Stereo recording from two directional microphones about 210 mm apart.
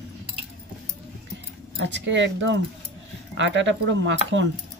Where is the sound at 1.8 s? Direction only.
60° right (ahead or behind).